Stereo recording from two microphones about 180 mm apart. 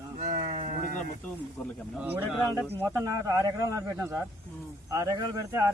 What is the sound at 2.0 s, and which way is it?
Speech, 10° right (ahead or behind).